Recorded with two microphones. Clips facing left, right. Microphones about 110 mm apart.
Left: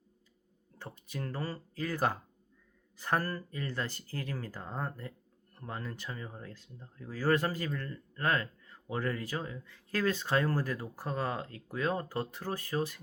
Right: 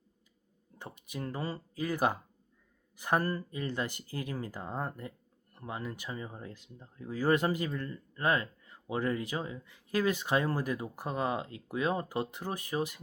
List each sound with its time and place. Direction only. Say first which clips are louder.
0.8 s speech: right 1 dB; 15° right (ahead or behind)